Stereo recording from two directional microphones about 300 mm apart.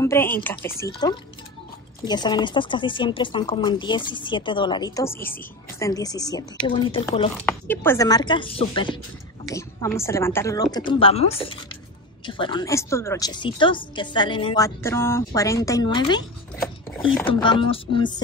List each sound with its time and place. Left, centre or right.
0.0 s speech: centre
17.3 s speech: centre